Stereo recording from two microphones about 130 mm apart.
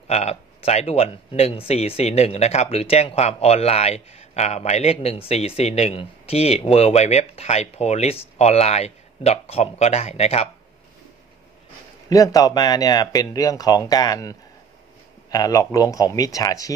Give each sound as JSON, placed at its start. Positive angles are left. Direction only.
{"t": 0.1, "sound": "speech", "side_deg": 55}
{"t": 12.1, "sound": "speech", "side_deg": 30}